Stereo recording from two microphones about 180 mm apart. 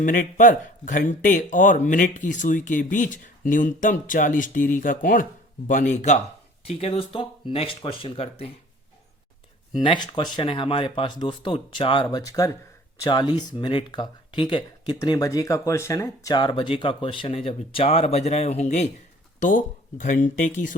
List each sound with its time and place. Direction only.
0.0 s speech: 50° left (ahead or behind); by 8.4 s 30° left (ahead or behind)
9.7 s speech: 25° left (ahead or behind); by 20.7 s 45° left (ahead or behind)